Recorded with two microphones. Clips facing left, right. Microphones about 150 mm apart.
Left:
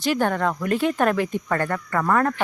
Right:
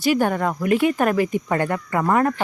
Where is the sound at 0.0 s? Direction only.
10° right (ahead or behind).